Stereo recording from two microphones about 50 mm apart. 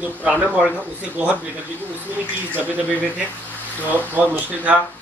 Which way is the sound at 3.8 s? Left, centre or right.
Right.